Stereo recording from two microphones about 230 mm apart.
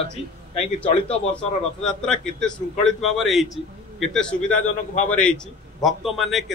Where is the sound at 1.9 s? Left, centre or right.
Centre.